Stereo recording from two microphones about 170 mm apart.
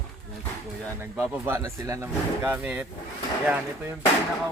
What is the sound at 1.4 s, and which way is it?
Speech, 15° right (ahead or behind).